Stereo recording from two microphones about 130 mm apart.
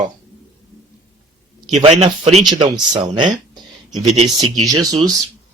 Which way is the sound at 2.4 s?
35° right (ahead or behind).